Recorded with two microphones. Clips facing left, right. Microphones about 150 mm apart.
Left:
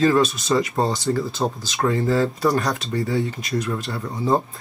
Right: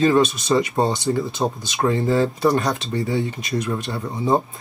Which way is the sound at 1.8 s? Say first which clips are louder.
Right 1 dB; 25° right (ahead or behind).